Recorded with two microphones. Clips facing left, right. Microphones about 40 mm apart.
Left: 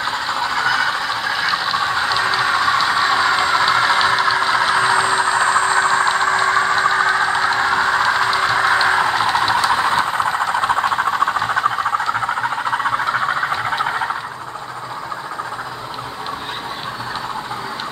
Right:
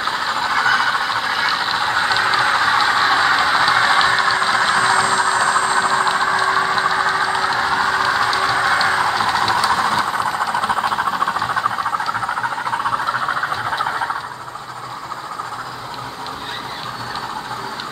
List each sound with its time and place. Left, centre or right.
0.0 s train: centre; by 6.0 s left
6.5 s vehicle: centre
6.9 s vehicle: centre
9.3 s train: centre
9.9 s train: left
12.7 s frog: left